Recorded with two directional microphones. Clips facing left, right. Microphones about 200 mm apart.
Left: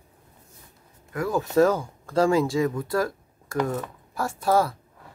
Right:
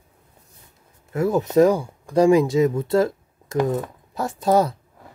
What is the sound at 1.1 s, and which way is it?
Speech, 25° right (ahead or behind).